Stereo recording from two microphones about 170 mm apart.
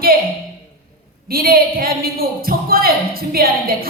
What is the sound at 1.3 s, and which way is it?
A woman's voice, 60° right (ahead or behind).